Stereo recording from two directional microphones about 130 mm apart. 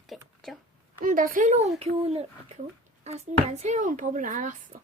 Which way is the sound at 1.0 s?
90° right.